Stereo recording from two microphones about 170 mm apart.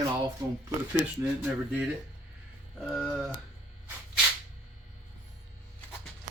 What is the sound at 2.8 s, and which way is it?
Speech, centre (ahead or behind).